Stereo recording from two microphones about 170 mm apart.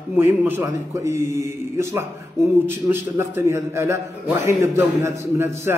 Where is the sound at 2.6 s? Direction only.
15° right (ahead or behind).